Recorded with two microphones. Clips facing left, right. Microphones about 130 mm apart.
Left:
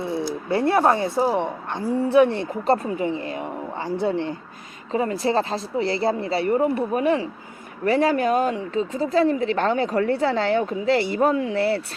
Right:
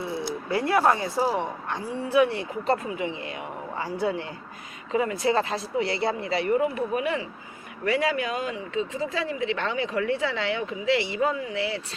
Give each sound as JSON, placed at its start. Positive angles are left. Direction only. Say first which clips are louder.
{"t": 0.5, "sound": "a woman's voice", "louder": "left 3 dB", "side_deg": 30}
{"t": 2.1, "sound": "speech", "louder": "left 3 dB", "side_deg": 35}
{"t": 4.0, "sound": "a woman's voice", "louder": "left 4 dB", "side_deg": 30}